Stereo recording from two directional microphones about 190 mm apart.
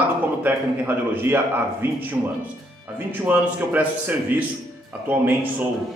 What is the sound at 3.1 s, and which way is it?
A man's voice, 10° right (ahead or behind).